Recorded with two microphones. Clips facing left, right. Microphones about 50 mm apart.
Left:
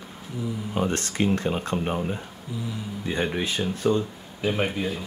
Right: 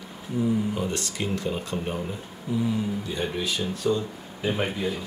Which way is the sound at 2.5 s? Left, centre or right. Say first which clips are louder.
Right 8 dB; centre.